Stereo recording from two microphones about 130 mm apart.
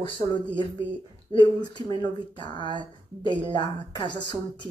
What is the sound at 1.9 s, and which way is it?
A woman's voice, 35° left (ahead or behind).